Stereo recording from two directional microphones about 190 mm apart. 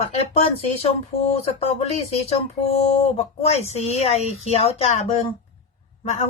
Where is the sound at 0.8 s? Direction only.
30° left (ahead or behind).